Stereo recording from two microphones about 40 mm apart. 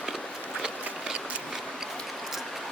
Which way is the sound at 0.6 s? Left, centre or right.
Centre.